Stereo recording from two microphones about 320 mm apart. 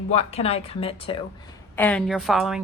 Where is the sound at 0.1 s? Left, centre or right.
Centre.